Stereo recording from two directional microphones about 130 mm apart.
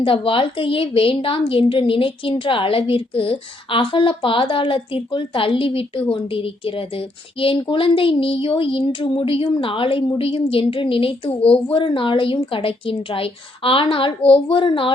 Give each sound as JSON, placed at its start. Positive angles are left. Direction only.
{"t": 0.0, "sound": "a woman's voice", "side_deg": 40}